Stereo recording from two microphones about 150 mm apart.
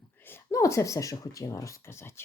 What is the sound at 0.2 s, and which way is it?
Speech, 15° left (ahead or behind).